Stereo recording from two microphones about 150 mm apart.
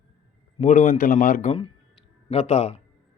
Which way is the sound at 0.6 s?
60° left (ahead or behind).